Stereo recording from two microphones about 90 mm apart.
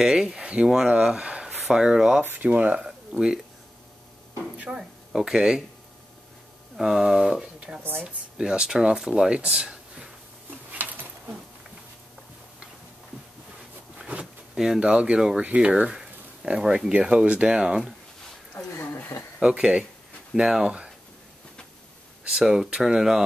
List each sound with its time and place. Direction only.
0.0 s speech: 5° right (ahead or behind)
2.2 s speech: 20° right (ahead or behind)
4.6 s speech: 5° right (ahead or behind)
6.8 s speech: 5° right (ahead or behind)
7.8 s speech: 25° right (ahead or behind)
8.4 s speech: 10° right (ahead or behind)
10.7 s a sound: 20° right (ahead or behind)
13.9 s a sound: 10° right (ahead or behind)
15.4 s speech: 15° right (ahead or behind)
18.8 s a sound: 25° left (ahead or behind)
19.4 s speech: 10° right (ahead or behind)
22.3 s speech: 5° right (ahead or behind)